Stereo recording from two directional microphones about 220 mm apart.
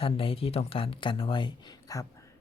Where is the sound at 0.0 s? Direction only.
25° left (ahead or behind).